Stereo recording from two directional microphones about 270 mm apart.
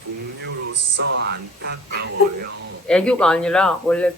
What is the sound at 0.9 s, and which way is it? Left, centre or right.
Speech, right.